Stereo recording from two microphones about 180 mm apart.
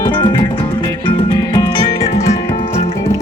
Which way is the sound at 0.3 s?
20° left (ahead or behind).